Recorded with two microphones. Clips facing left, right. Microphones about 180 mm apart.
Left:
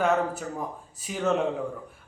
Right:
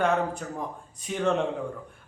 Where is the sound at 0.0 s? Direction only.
5° left (ahead or behind).